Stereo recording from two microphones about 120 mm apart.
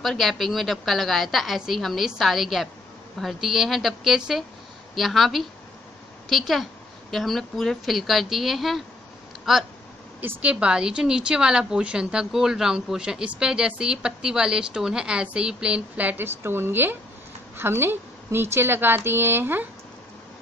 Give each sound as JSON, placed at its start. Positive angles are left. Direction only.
{"t": 0.0, "sound": "a woman's voice", "side_deg": 0}